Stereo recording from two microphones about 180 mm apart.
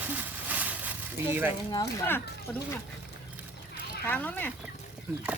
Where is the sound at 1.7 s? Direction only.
15° left (ahead or behind).